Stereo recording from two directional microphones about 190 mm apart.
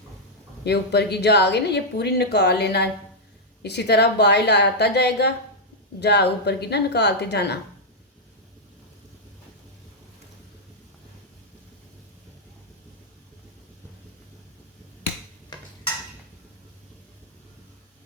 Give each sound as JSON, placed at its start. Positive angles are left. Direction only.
{"t": 0.6, "sound": "speech", "side_deg": 60}